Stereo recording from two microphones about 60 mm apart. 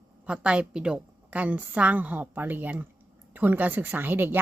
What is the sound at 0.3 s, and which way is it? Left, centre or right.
A woman's voice, centre.